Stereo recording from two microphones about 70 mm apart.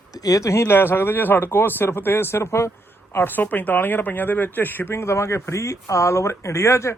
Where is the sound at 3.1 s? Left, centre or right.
Left.